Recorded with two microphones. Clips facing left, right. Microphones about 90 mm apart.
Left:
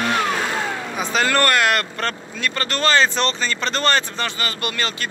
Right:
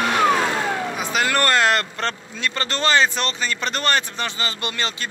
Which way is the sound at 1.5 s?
30° right (ahead or behind).